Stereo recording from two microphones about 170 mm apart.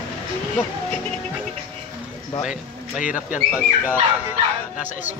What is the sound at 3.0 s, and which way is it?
Speech, 50° left (ahead or behind).